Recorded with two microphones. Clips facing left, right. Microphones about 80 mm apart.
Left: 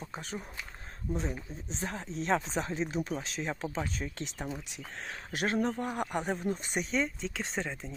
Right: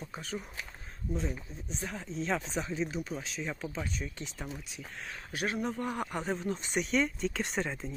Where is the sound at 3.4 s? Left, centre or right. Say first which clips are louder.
Left 3 dB; left.